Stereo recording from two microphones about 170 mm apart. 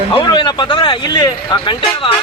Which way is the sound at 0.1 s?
30° left (ahead or behind).